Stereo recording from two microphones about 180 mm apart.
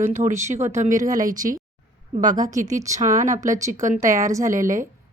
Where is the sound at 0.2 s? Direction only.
45° right (ahead or behind).